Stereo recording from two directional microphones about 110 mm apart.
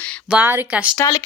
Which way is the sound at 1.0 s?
25° left (ahead or behind).